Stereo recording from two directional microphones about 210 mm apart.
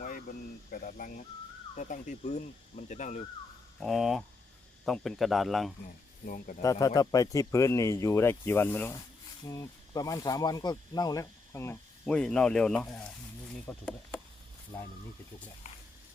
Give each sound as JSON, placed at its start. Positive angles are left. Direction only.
{"t": 0.0, "sound": "a sound", "side_deg": 40}
{"t": 1.7, "sound": "speech", "side_deg": 35}
{"t": 3.8, "sound": "speech", "side_deg": 0}
{"t": 6.2, "sound": "speech", "side_deg": 40}
{"t": 6.6, "sound": "speech", "side_deg": 15}
{"t": 15.6, "sound": "a sound", "side_deg": 35}